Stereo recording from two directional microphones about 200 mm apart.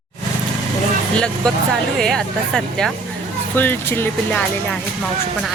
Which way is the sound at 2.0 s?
Centre (ahead or behind).